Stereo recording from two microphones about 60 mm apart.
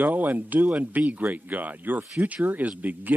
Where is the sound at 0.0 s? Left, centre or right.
Right.